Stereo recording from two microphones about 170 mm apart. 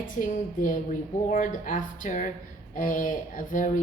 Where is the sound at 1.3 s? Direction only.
50° left (ahead or behind).